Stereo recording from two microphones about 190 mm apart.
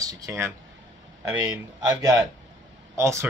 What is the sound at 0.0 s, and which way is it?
A man's voice, 15° right (ahead or behind).